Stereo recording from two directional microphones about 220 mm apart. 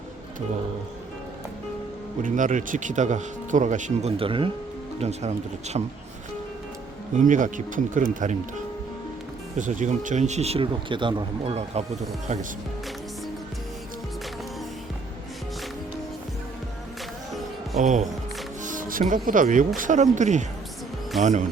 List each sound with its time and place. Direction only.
2.2 s speech: 35° right (ahead or behind)
7.2 s speech: 35° right (ahead or behind)
17.7 s speech: 35° right (ahead or behind)